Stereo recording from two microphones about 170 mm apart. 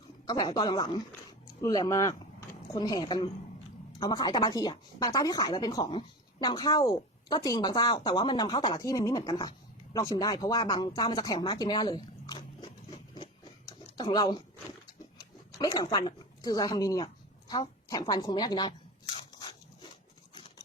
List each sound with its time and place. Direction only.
0.3 s speech: 25° left (ahead or behind)
13.9 s speech: 25° left (ahead or behind)
15.5 s speech: 25° left (ahead or behind)
17.5 s a sound: 20° left (ahead or behind)